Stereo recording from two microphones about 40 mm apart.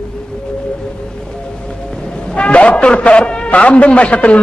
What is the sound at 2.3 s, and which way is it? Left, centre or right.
A man's voice, left.